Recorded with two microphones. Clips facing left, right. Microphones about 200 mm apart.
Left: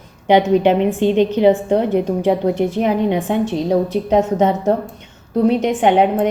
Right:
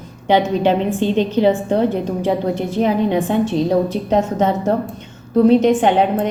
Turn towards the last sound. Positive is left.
turn(degrees=15)  # may be behind; listen again after turning